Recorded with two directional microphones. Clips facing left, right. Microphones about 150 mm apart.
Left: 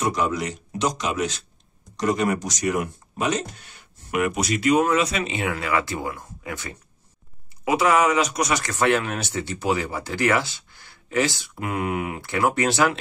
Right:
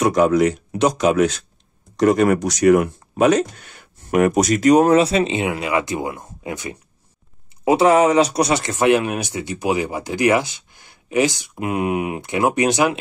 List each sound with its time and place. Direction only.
0.0 s speech: 55° right (ahead or behind); by 6.8 s 15° right (ahead or behind)
7.6 s speech: 30° right (ahead or behind)